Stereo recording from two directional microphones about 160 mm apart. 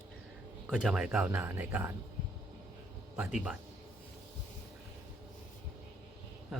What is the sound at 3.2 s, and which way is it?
Speech, 5° right (ahead or behind).